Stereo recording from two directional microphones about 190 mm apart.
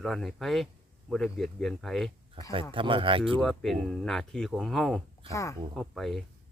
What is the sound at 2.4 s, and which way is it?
Speech, 25° right (ahead or behind).